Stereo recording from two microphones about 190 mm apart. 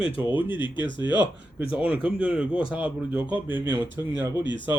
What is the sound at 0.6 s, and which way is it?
Speech, 25° left (ahead or behind).